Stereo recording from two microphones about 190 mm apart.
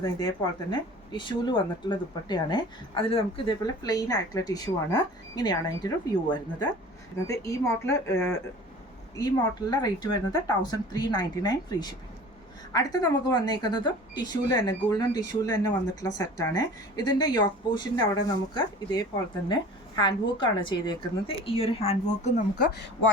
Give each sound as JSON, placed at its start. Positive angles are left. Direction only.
{"t": 0.3, "sound": "speech", "side_deg": 25}
{"t": 7.3, "sound": "a woman's voice", "side_deg": 15}